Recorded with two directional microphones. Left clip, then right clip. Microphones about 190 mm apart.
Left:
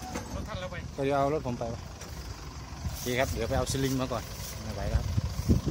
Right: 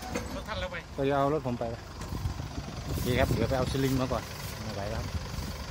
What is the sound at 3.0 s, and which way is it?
Speech, 15° left (ahead or behind).